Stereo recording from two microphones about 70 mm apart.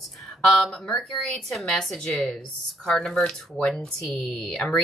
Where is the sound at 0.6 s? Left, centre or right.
Centre.